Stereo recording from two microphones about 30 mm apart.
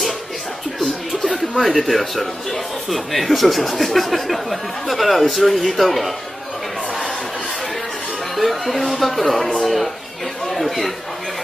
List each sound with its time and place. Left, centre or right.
1.4 s speech: centre
8.4 s speech: centre